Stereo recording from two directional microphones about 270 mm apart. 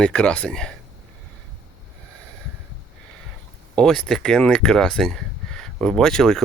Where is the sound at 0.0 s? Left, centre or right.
Centre.